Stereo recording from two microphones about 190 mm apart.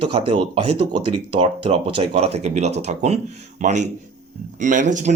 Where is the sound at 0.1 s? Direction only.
25° right (ahead or behind).